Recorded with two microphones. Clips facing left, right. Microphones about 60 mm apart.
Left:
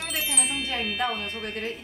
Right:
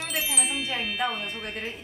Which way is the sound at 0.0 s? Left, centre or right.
Centre.